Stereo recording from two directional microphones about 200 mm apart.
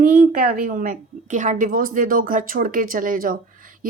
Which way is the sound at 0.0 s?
40° right (ahead or behind).